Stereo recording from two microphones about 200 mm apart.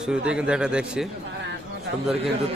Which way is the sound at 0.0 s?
5° right (ahead or behind).